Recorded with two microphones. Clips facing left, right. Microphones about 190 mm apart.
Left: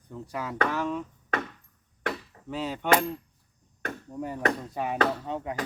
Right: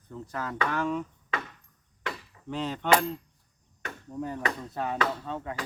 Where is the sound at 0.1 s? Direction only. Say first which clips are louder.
Left 1 dB; 10° left (ahead or behind).